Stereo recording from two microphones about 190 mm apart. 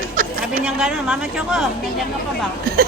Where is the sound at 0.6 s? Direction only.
5° right (ahead or behind).